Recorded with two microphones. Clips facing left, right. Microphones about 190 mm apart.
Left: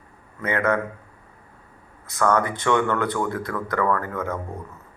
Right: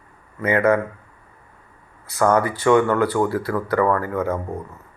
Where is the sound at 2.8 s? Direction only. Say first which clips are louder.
Right 5 dB; 35° right (ahead or behind).